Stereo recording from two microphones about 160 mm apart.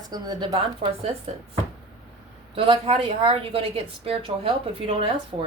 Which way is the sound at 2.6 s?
35° right (ahead or behind).